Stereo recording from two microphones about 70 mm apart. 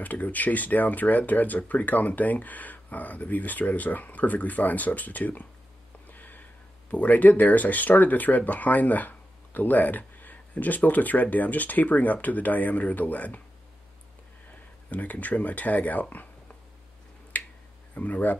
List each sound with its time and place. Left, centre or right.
0.0 s speech: left
6.0 s a sound: left
6.9 s speech: left
14.9 s speech: left
17.3 s finger snapping: left
17.9 s speech: left